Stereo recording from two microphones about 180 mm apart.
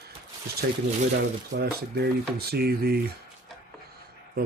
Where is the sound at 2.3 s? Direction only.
60° right (ahead or behind).